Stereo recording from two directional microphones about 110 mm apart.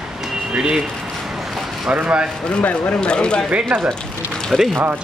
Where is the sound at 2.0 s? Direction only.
10° right (ahead or behind).